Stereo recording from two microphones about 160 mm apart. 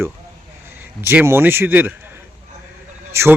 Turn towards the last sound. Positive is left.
turn(degrees=-15)  # may be behind; listen again after turning